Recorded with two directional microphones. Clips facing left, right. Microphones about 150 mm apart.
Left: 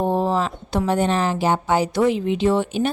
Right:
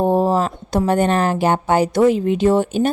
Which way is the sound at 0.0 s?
40° right (ahead or behind).